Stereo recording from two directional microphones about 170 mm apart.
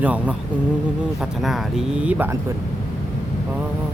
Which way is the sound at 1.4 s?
Centre (ahead or behind).